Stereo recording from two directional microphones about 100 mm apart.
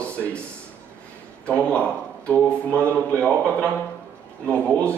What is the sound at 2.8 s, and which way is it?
Speech, 25° right (ahead or behind).